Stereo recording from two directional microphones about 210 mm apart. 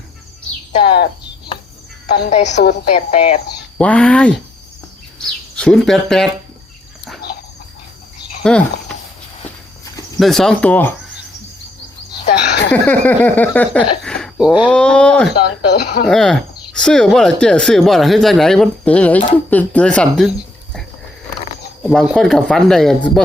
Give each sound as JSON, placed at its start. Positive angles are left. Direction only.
{"t": 0.8, "sound": "speech", "side_deg": 50}
{"t": 2.0, "sound": "a woman's voice", "side_deg": 50}
{"t": 2.3, "sound": "a woman's voice", "side_deg": 35}
{"t": 3.8, "sound": "speech", "side_deg": 5}
{"t": 5.5, "sound": "speech", "side_deg": 5}
{"t": 8.4, "sound": "speech", "side_deg": 5}
{"t": 10.2, "sound": "speech", "side_deg": 0}
{"t": 12.3, "sound": "a sound", "side_deg": 55}
{"t": 12.7, "sound": "a sound", "side_deg": 10}
{"t": 13.8, "sound": "speech", "side_deg": 5}
{"t": 15.4, "sound": "speech", "side_deg": 50}
{"t": 16.0, "sound": "speech", "side_deg": 0}
{"t": 21.8, "sound": "speech", "side_deg": 0}